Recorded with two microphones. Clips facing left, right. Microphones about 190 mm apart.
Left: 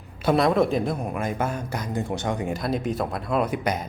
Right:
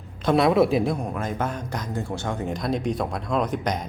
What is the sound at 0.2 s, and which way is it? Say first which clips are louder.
A woman's voice: right 1 dB; 5° left (ahead or behind).